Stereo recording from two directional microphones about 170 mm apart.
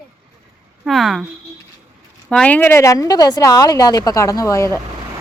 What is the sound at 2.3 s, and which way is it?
A woman's voice, 10° left (ahead or behind).